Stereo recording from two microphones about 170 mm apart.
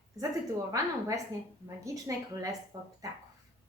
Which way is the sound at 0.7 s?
20° right (ahead or behind).